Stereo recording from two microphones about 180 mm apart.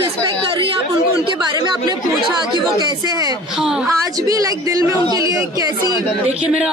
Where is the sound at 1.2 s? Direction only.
25° right (ahead or behind).